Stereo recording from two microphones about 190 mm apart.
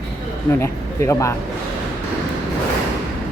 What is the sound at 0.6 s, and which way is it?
Speech, 15° left (ahead or behind).